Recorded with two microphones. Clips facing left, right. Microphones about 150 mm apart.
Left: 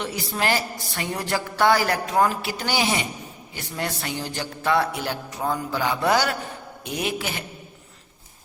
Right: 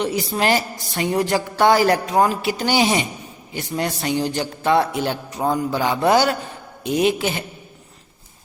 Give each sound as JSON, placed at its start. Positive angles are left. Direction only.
{"t": 0.0, "sound": "a woman's voice", "side_deg": -20}